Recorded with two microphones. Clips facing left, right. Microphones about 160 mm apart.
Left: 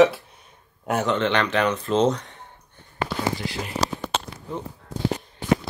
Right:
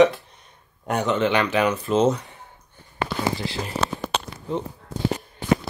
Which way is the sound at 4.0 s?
25° right (ahead or behind).